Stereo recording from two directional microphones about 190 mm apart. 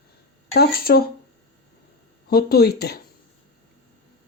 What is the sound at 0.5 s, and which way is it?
Speech, 55° left (ahead or behind).